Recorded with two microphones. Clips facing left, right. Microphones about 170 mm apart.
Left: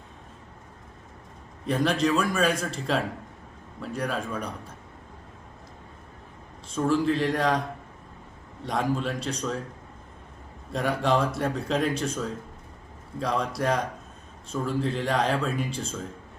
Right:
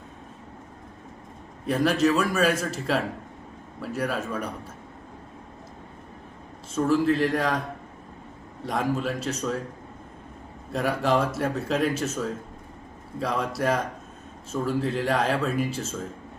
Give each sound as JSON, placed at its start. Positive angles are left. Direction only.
{"t": 1.6, "sound": "speech", "side_deg": -5}
{"t": 6.7, "sound": "speech", "side_deg": -5}
{"t": 8.6, "sound": "speech", "side_deg": -5}
{"t": 10.7, "sound": "speech", "side_deg": -5}